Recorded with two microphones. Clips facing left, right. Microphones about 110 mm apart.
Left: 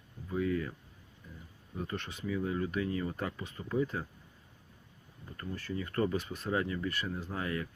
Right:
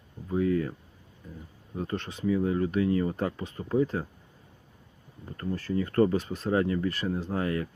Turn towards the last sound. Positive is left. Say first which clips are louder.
# right 7 dB
turn(degrees=-40)  # may be behind; listen again after turning